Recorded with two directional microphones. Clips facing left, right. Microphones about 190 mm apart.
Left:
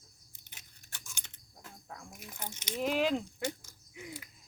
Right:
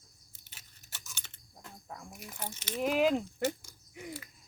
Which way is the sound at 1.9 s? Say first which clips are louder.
Right 2 dB; centre (ahead or behind).